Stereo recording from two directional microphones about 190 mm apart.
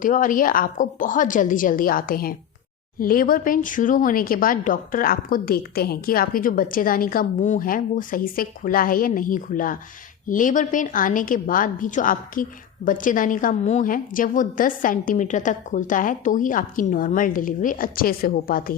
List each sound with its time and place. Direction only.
0.0 s a woman's voice: 45° left (ahead or behind)